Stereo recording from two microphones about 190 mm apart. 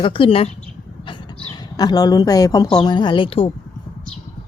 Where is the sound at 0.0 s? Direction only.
30° left (ahead or behind).